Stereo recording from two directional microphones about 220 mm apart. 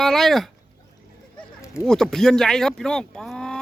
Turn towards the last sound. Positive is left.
turn(degrees=0)  # may be behind; listen again after turning